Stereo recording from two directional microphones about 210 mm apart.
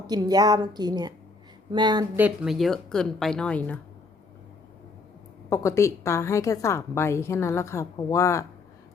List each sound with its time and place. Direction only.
0.1 s a woman's voice: 20° right (ahead or behind)
2.1 s speech: 5° right (ahead or behind)
5.5 s a woman's voice: 15° left (ahead or behind)